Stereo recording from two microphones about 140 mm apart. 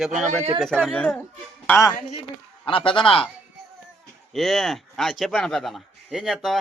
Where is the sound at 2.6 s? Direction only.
35° left (ahead or behind).